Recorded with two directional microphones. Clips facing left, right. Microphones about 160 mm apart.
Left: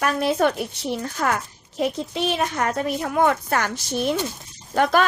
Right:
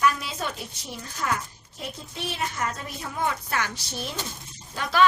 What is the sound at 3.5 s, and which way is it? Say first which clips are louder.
Speech: left 7 dB; 50° left (ahead or behind).